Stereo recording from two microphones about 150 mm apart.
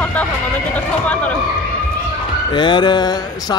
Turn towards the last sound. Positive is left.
turn(degrees=30)  # may be behind; listen again after turning